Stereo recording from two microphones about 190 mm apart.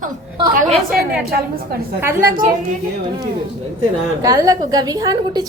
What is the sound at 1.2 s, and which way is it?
Speech, 55° right (ahead or behind).